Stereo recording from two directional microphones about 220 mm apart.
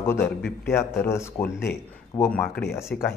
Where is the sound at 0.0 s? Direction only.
10° left (ahead or behind).